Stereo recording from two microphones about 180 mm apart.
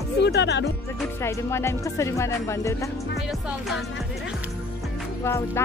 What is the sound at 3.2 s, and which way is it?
Music, centre (ahead or behind).